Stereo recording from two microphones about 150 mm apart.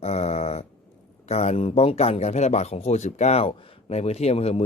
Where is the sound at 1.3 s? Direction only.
45° left (ahead or behind).